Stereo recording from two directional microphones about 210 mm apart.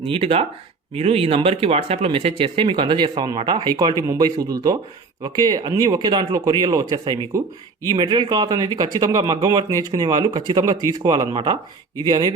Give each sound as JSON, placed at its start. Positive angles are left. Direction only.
{"t": 0.0, "sound": "speech", "side_deg": -25}